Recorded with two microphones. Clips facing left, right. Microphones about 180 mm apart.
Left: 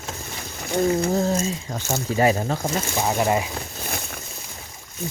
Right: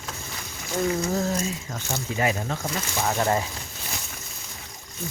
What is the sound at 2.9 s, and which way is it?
Speech, 15° left (ahead or behind).